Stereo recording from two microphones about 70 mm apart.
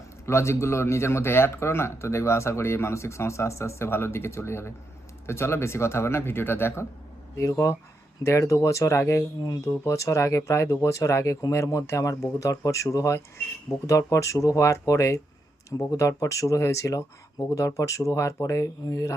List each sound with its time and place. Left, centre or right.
0.3 s speech: left